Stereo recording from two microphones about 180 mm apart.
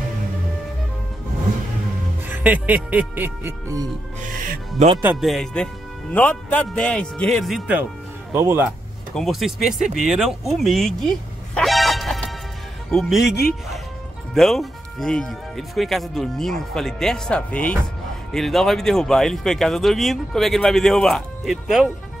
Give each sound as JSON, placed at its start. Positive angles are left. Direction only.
{"t": 2.2, "sound": "speech", "side_deg": -10}
{"t": 4.2, "sound": "speech", "side_deg": -50}
{"t": 5.0, "sound": "speech", "side_deg": 0}
{"t": 9.1, "sound": "speech", "side_deg": 0}
{"t": 9.9, "sound": "a sound", "side_deg": 0}
{"t": 12.9, "sound": "speech", "side_deg": 0}